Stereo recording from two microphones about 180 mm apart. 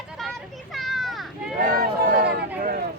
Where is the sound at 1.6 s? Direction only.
55° right (ahead or behind).